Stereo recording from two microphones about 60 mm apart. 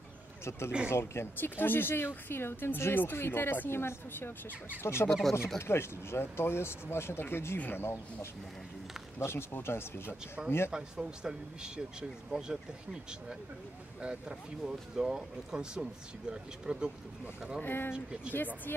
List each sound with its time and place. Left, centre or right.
0.7 s speech: right
0.9 s a woman's voice: left
10.4 s speech: centre
17.6 s a woman's voice: left
17.9 s speech: centre
18.7 s a woman's voice: left